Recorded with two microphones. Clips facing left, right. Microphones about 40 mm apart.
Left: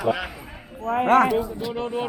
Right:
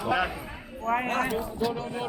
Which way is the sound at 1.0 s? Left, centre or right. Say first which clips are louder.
Left 11 dB; left.